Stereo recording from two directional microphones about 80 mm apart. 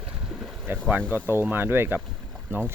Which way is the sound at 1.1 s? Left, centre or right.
Right.